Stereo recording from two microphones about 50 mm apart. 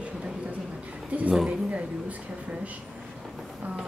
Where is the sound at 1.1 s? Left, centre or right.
Right.